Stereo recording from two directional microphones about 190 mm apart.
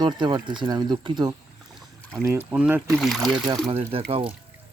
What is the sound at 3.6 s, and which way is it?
Speech, 30° right (ahead or behind).